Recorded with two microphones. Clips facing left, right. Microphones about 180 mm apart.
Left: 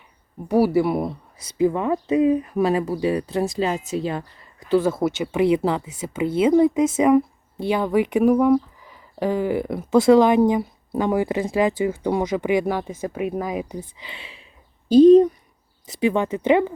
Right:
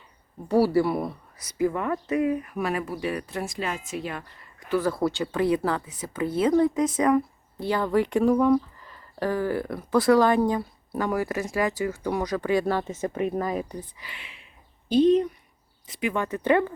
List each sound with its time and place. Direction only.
0.4 s speech: 15° left (ahead or behind)
14.0 s speech: 30° left (ahead or behind)